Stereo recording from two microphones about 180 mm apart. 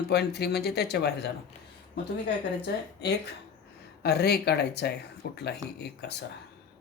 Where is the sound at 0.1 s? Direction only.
65° left (ahead or behind).